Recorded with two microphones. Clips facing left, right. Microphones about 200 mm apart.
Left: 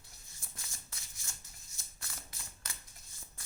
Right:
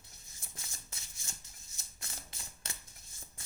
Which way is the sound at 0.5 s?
20° right (ahead or behind).